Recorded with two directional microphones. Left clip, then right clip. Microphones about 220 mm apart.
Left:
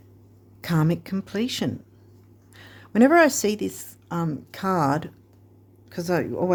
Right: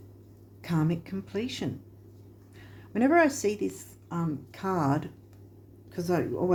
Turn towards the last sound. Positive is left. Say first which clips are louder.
# left 4 dB
turn(degrees=45)  # may be behind; listen again after turning